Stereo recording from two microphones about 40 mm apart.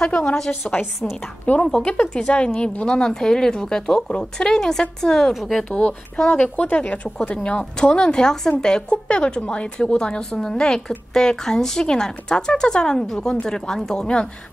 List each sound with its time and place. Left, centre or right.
0.2 s speech: centre
0.5 s a woman's voice: left
1.8 s speech: left
3.0 s speech: centre
5.7 s speech: left
6.3 s speech: left
10.4 s speech: centre